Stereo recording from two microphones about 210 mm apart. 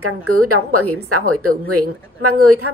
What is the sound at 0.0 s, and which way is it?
A woman's voice, 90° right.